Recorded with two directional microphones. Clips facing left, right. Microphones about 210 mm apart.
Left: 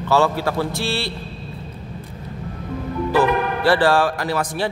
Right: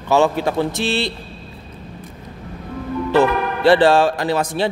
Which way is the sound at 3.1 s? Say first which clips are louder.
Right 2 dB; 20° right (ahead or behind).